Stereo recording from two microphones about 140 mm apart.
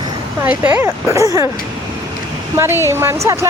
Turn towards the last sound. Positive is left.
turn(degrees=-20)  # may be behind; listen again after turning